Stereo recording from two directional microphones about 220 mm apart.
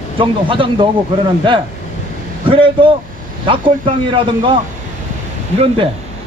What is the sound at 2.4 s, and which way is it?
Speech, 25° right (ahead or behind).